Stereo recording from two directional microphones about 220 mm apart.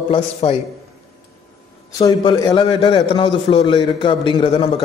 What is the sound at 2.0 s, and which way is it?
A man's voice, 20° left (ahead or behind).